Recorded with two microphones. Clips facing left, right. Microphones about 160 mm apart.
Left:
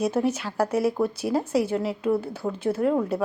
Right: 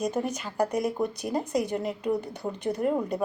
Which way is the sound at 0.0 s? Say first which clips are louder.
Left 5 dB; 5° left (ahead or behind).